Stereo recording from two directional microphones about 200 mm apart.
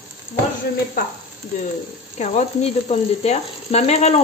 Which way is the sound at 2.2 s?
35° left (ahead or behind).